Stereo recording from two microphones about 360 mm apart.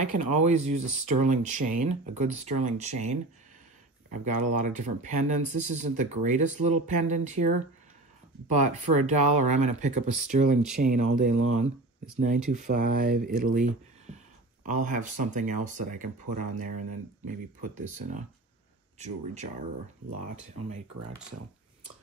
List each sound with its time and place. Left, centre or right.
0.1 s speech: centre